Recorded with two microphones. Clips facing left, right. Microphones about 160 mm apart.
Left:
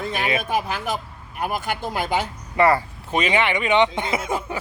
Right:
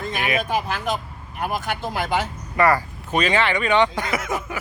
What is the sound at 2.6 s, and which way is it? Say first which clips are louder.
Speech: left 1 dB; 25° left (ahead or behind).